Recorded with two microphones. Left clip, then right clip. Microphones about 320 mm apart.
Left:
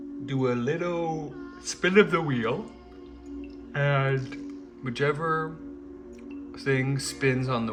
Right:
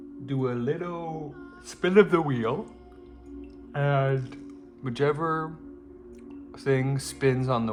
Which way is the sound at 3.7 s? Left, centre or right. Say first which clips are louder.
Even; centre.